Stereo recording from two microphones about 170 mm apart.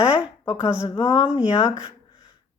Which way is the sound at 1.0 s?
25° left (ahead or behind).